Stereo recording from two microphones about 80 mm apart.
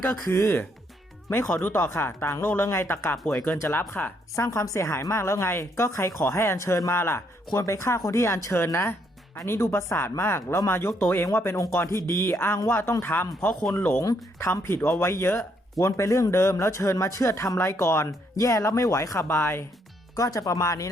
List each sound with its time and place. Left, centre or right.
0.0 s speech: left
4.4 s speech: left; by 14.0 s centre
14.3 s speech: left
19.2 s speech: left
20.1 s speech: left